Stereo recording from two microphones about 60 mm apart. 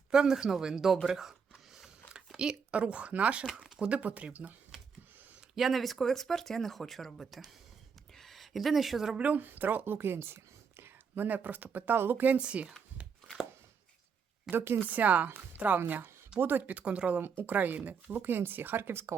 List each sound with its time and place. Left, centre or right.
0.1 s speech: centre
1.0 s a sound: centre
3.4 s speech: centre
3.8 s speech: right
5.5 s speech: centre
8.1 s a sound: centre
9.1 s speech: right
11.1 s speech: right
12.4 s speech: centre
14.5 s speech: right
14.8 s speech: right